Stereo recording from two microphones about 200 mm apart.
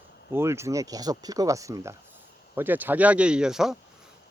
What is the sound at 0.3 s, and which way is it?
Speech, 15° right (ahead or behind).